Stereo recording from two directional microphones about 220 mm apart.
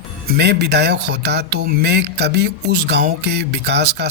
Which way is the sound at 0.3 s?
50° right (ahead or behind).